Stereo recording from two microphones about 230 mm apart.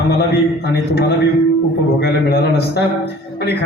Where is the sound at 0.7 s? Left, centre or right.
Left.